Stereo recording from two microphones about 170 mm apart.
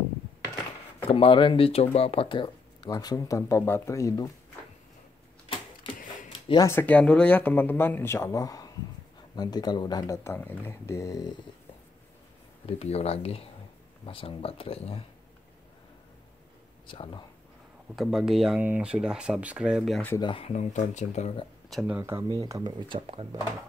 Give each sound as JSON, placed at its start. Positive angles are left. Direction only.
{"t": 1.1, "sound": "speech", "side_deg": 30}
{"t": 6.5, "sound": "speech", "side_deg": 15}
{"t": 12.6, "sound": "speech", "side_deg": 40}
{"t": 16.8, "sound": "speech", "side_deg": 30}
{"t": 17.9, "sound": "speech", "side_deg": 0}
{"t": 20.2, "sound": "speech", "side_deg": 30}
{"t": 21.6, "sound": "speech", "side_deg": 0}
{"t": 21.9, "sound": "speech", "side_deg": -15}
{"t": 22.3, "sound": "speech", "side_deg": -25}